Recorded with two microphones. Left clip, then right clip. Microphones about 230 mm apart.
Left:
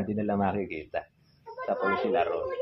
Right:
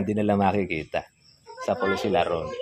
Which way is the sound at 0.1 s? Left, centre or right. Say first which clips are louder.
Right 7 dB; right.